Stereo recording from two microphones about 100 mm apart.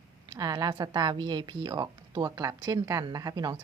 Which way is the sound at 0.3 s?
40° right (ahead or behind).